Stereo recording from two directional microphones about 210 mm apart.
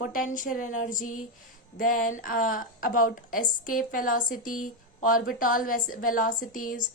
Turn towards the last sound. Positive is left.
turn(degrees=40)  # may be behind; listen again after turning